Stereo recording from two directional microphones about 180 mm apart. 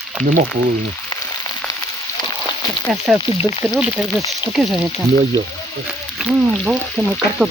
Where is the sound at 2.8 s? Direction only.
Centre (ahead or behind).